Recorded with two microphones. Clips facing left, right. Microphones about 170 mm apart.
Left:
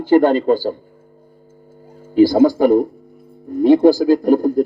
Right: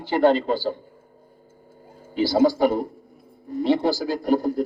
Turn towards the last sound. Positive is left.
turn(degrees=50)  # may be behind; listen again after turning